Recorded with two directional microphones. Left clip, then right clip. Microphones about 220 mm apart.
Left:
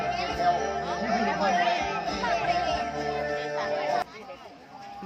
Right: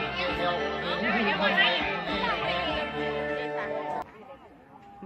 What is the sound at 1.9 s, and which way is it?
Music, 40° left (ahead or behind).